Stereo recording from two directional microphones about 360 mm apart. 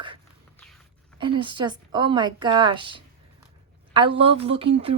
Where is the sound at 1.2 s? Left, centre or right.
Centre.